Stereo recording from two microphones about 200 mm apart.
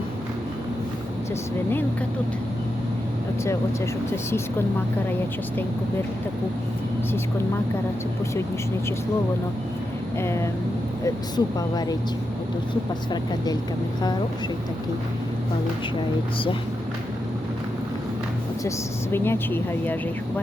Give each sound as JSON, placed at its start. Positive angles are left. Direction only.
{"t": 10.2, "sound": "speech", "side_deg": 15}
{"t": 19.1, "sound": "speech", "side_deg": 10}